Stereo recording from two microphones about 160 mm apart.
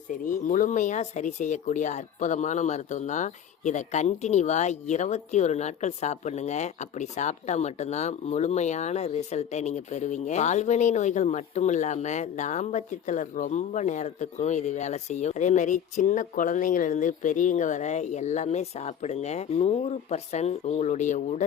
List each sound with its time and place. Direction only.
0.1 s speech: 55° left (ahead or behind)